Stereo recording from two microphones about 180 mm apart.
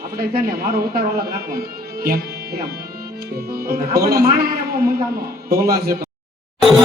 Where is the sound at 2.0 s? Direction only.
55° right (ahead or behind).